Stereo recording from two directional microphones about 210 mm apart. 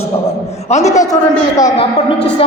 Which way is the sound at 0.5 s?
30° left (ahead or behind).